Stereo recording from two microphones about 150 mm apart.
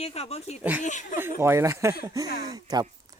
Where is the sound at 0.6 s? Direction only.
10° right (ahead or behind).